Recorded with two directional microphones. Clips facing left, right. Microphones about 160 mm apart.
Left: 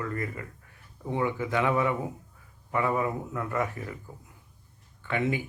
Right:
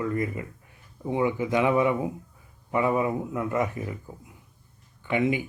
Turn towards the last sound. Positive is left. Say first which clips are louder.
# right 4 dB
turn(degrees=-15)  # may be behind; listen again after turning